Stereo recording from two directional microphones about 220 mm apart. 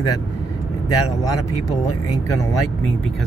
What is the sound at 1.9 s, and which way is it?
Speech, 90° left.